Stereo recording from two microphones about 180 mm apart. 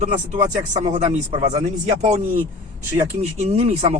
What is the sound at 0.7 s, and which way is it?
Speech, 40° right (ahead or behind).